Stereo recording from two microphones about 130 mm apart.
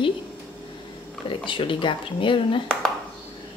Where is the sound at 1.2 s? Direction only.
40° left (ahead or behind).